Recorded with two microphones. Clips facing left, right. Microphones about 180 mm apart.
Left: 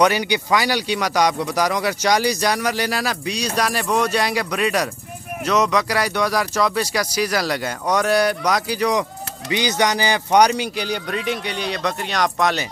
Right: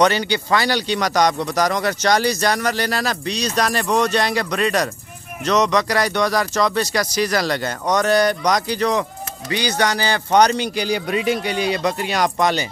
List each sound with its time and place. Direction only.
0.0 s speech: 10° left (ahead or behind)